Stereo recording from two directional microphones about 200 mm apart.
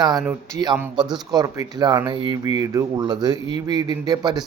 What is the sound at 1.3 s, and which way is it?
Speech, 20° right (ahead or behind).